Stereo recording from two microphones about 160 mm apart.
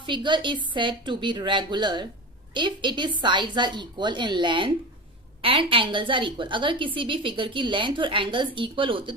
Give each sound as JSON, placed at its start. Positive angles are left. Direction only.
{"t": 0.0, "sound": "a woman's voice", "side_deg": -30}